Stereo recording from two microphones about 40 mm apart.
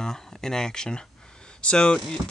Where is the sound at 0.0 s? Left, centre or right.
Centre.